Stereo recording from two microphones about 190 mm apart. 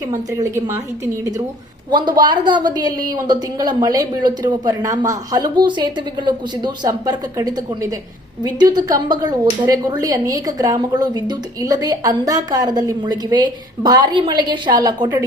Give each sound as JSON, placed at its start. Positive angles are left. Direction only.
{"t": 0.1, "sound": "a woman's voice", "side_deg": -15}
{"t": 1.9, "sound": "speech", "side_deg": -20}